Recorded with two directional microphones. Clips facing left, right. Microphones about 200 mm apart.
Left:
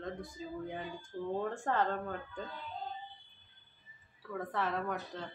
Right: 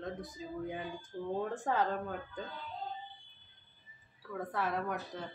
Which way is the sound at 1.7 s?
5° right (ahead or behind).